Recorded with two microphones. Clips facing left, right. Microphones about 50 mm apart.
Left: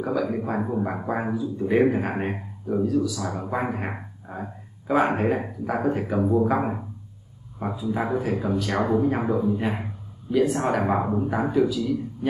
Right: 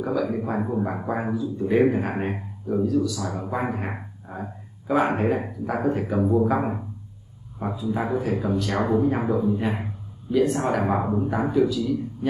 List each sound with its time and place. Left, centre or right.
0.0 s a man's voice: centre